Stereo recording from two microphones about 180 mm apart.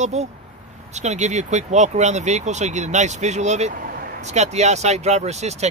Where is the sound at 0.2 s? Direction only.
40° right (ahead or behind).